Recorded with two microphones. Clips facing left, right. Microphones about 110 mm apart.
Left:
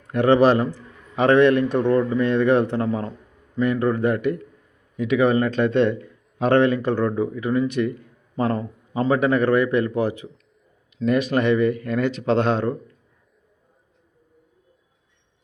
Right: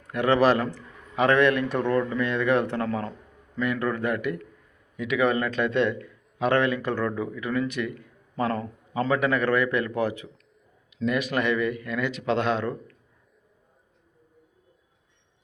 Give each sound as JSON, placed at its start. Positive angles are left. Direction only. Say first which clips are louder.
{"t": 0.1, "sound": "a man's voice", "louder": "left 5 dB", "side_deg": 25}
{"t": 10.9, "sound": "speech", "louder": "left 5 dB", "side_deg": 35}